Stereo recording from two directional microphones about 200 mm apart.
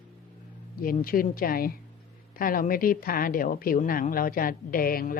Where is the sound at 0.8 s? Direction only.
45° left (ahead or behind).